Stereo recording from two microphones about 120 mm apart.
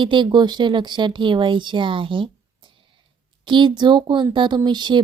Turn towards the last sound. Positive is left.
turn(degrees=-40)  # may be behind; listen again after turning